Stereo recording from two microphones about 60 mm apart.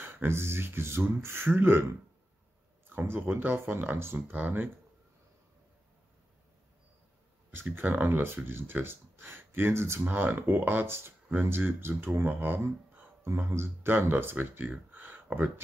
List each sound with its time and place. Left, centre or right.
0.1 s speech: right
2.9 s speech: right
7.5 s speech: right